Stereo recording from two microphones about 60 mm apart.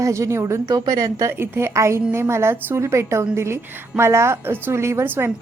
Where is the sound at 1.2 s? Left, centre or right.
Right.